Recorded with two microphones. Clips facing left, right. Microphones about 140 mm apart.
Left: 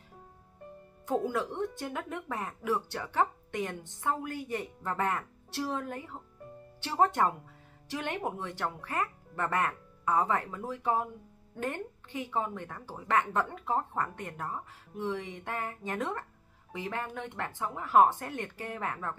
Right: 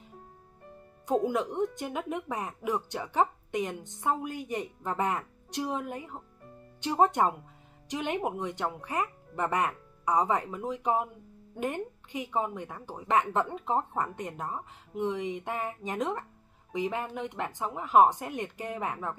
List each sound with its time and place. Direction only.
1.0 s a woman's voice: 15° right (ahead or behind)